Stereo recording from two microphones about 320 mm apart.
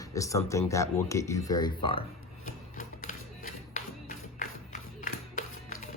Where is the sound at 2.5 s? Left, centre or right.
Left.